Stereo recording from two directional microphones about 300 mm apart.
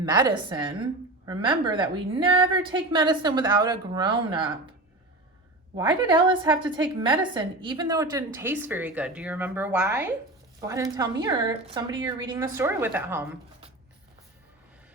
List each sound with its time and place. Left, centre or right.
0.0 s a woman's voice: centre
5.7 s a woman's voice: centre